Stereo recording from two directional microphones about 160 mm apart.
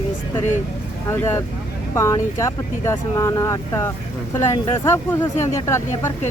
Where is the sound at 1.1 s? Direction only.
15° left (ahead or behind).